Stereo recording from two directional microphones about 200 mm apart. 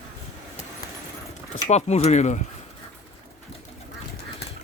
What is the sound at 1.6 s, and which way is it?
Speech, 35° left (ahead or behind).